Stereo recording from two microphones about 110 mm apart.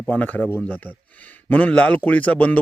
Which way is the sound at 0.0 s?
10° left (ahead or behind).